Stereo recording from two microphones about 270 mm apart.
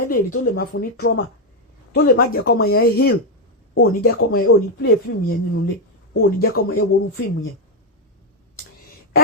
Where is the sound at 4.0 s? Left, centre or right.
Left.